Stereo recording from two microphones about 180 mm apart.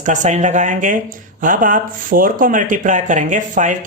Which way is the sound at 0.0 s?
45° right (ahead or behind).